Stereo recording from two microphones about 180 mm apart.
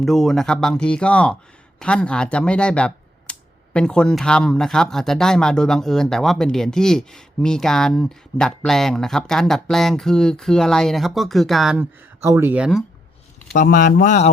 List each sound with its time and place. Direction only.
0.0 s speech: centre (ahead or behind)
12.2 s speech: 15° right (ahead or behind)
13.5 s speech: 50° left (ahead or behind)